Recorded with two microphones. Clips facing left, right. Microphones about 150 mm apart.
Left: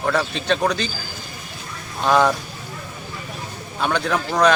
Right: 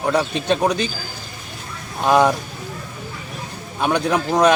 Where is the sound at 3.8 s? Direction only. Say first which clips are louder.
Right 3 dB; 20° right (ahead or behind).